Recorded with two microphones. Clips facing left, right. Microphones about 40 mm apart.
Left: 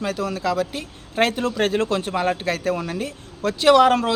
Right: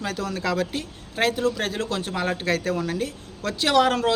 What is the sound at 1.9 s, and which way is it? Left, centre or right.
A woman's voice, left.